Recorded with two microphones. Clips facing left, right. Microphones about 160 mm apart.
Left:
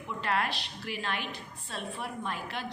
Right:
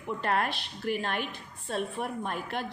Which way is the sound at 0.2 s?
50° right (ahead or behind).